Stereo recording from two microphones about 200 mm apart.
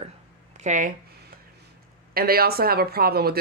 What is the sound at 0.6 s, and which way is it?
Speech, 40° right (ahead or behind).